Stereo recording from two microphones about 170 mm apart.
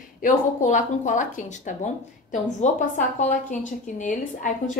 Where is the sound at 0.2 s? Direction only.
45° left (ahead or behind).